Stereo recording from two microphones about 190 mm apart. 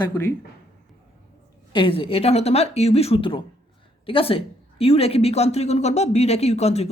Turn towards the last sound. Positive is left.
turn(degrees=35)  # may be behind; listen again after turning